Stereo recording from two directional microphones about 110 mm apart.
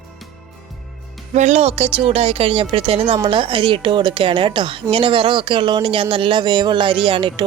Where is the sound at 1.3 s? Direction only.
90° right; by 3.1 s 60° right (ahead or behind).